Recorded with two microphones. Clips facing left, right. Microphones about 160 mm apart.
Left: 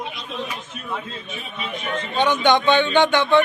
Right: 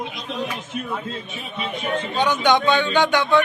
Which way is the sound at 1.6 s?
30° right (ahead or behind).